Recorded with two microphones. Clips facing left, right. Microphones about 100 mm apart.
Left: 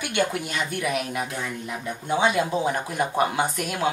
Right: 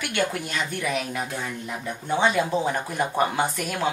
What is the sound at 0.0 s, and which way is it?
Speech, 20° left (ahead or behind).